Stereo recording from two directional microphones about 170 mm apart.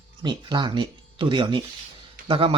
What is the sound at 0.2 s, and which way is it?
Speech, 25° right (ahead or behind).